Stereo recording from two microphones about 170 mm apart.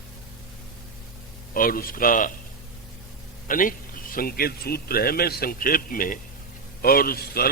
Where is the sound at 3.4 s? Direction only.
55° left (ahead or behind).